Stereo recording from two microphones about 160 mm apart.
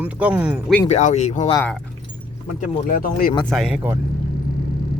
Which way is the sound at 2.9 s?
60° left (ahead or behind).